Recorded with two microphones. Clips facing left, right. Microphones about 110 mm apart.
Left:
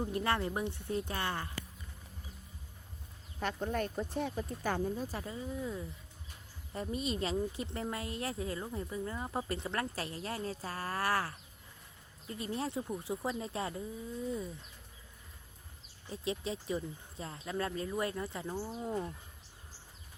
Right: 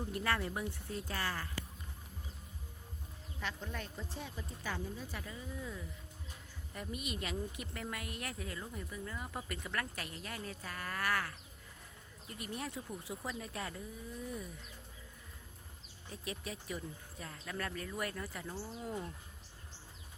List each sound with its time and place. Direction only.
0.0 s speech: 25° left (ahead or behind)
3.4 s speech: 50° left (ahead or behind); by 14.4 s 25° left (ahead or behind)
16.0 s speech: 25° left (ahead or behind)